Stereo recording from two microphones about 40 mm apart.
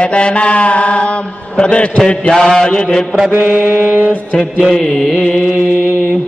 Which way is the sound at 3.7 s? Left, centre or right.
Right.